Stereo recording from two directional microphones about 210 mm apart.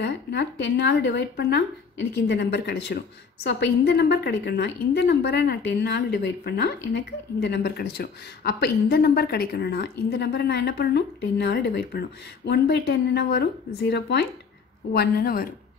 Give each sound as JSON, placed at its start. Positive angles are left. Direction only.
{"t": 0.0, "sound": "a woman's voice", "side_deg": 55}